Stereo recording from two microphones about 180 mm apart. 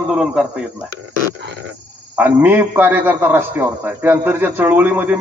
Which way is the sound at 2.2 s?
10° right (ahead or behind).